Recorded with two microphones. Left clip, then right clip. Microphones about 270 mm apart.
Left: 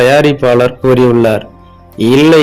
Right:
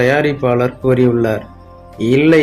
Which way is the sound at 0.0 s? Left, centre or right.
Centre.